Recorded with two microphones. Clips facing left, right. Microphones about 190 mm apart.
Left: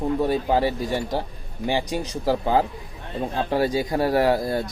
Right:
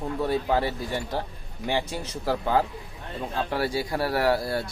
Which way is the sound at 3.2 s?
35° left (ahead or behind).